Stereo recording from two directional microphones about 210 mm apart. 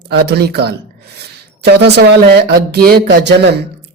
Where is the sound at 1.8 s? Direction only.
50° right (ahead or behind).